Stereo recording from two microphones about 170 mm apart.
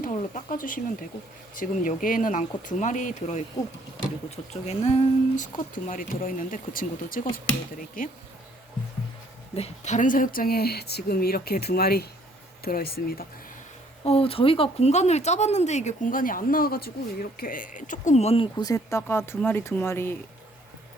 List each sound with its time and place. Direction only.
0.0 s speech: 45° left (ahead or behind)
4.6 s speech: 40° left (ahead or behind)
9.6 s speech: 40° left (ahead or behind); by 13.2 s 65° left (ahead or behind)
14.0 s speech: 35° left (ahead or behind)
18.6 s speech: 15° left (ahead or behind)